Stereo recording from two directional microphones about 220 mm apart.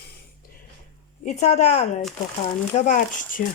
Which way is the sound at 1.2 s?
30° left (ahead or behind).